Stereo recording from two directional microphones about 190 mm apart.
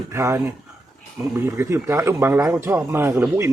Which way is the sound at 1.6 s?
15° right (ahead or behind).